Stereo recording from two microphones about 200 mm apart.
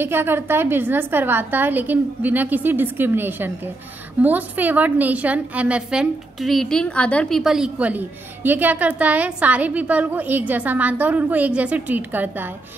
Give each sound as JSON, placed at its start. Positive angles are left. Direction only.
{"t": 0.0, "sound": "a woman's voice", "side_deg": -10}